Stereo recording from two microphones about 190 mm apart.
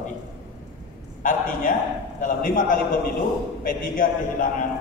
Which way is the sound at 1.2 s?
45° left (ahead or behind).